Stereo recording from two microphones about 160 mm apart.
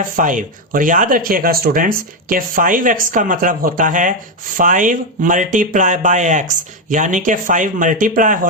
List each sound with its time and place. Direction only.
0.2 s speech: 55° right (ahead or behind)